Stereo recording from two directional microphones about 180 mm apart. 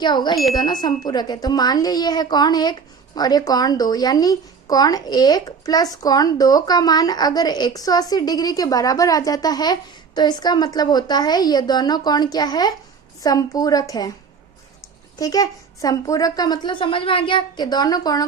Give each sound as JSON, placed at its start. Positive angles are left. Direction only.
{"t": 0.0, "sound": "speech", "side_deg": 25}
{"t": 15.2, "sound": "speech", "side_deg": 20}